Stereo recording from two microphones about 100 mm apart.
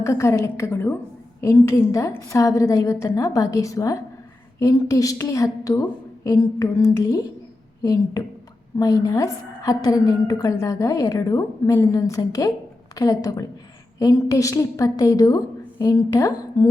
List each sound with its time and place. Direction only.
0.0 s a woman's voice: 30° left (ahead or behind)